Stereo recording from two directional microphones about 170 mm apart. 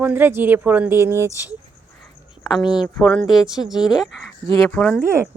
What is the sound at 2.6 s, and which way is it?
Speech, 25° left (ahead or behind).